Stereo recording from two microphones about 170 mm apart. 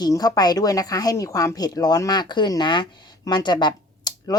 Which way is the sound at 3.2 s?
25° left (ahead or behind).